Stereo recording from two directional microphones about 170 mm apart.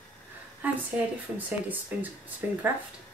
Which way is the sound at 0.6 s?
10° right (ahead or behind).